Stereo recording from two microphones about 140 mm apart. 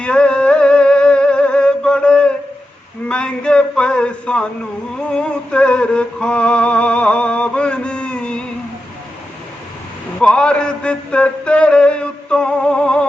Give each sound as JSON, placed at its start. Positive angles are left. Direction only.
{"t": 0.0, "sound": "music", "side_deg": 5}
{"t": 3.1, "sound": "speech", "side_deg": 5}
{"t": 5.1, "sound": "music", "side_deg": 5}
{"t": 10.2, "sound": "a sound", "side_deg": 5}